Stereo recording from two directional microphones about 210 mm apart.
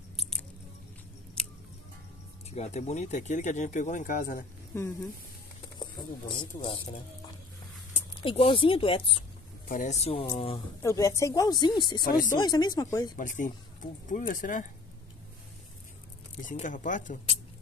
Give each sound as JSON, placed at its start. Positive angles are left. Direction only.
{"t": 1.4, "sound": "scissors", "side_deg": 5}
{"t": 2.5, "sound": "speech", "side_deg": 30}
{"t": 4.7, "sound": "speech", "side_deg": 10}
{"t": 5.8, "sound": "speech", "side_deg": 25}
{"t": 7.9, "sound": "speech", "side_deg": 25}
{"t": 9.7, "sound": "speech", "side_deg": 35}
{"t": 10.8, "sound": "speech", "side_deg": 15}
{"t": 12.0, "sound": "speech", "side_deg": 45}
{"t": 12.3, "sound": "speech", "side_deg": 20}
{"t": 13.1, "sound": "speech", "side_deg": 35}
{"t": 16.4, "sound": "speech", "side_deg": 40}